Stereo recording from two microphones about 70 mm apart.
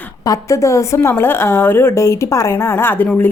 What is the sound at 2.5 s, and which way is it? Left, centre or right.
Speech, left.